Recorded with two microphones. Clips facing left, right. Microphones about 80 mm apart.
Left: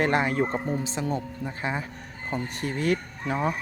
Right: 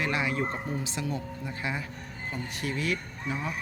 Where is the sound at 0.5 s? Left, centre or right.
Left.